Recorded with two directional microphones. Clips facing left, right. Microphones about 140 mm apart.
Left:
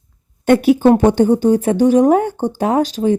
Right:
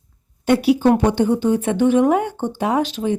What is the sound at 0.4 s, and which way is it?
Speech, 50° left (ahead or behind).